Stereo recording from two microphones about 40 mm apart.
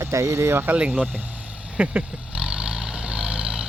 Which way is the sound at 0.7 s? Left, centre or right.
Right.